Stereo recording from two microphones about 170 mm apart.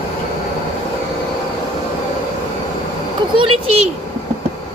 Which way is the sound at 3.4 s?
35° right (ahead or behind).